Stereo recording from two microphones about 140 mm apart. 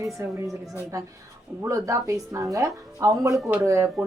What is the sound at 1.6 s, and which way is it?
Speech, 20° right (ahead or behind).